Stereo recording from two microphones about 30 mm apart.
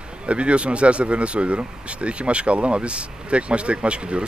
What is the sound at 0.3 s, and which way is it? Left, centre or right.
Speech, right.